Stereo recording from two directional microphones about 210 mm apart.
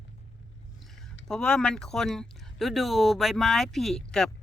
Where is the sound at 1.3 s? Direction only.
5° left (ahead or behind).